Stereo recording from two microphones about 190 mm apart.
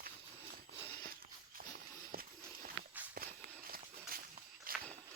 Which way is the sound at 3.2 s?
50° right (ahead or behind).